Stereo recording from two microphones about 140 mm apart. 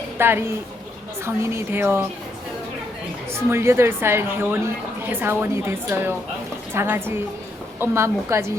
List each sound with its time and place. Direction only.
0.2 s a woman's voice: 15° right (ahead or behind)
3.3 s a woman's voice: 20° right (ahead or behind)